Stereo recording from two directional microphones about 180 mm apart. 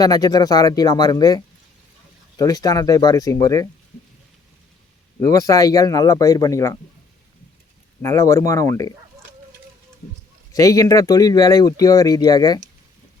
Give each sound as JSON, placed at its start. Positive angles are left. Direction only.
{"t": 0.0, "sound": "speech", "side_deg": 20}
{"t": 2.4, "sound": "speech", "side_deg": 20}
{"t": 5.2, "sound": "speech", "side_deg": 20}
{"t": 8.0, "sound": "speech", "side_deg": 20}
{"t": 10.5, "sound": "speech", "side_deg": 20}